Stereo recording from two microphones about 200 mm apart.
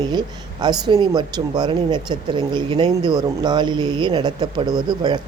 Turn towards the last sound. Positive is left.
turn(degrees=-20)  # may be behind; listen again after turning